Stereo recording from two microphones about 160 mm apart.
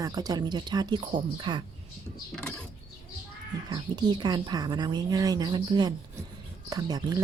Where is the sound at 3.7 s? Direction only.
30° right (ahead or behind).